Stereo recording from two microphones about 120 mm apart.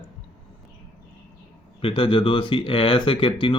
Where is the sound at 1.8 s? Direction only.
45° left (ahead or behind).